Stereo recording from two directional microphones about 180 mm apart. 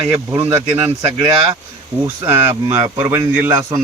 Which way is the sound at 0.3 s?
15° right (ahead or behind).